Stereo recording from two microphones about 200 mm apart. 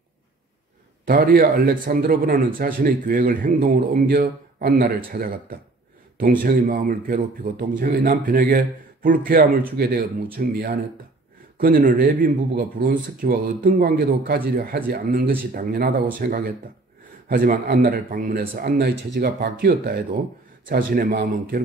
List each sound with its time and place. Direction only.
1.0 s a man's voice: 50° right (ahead or behind)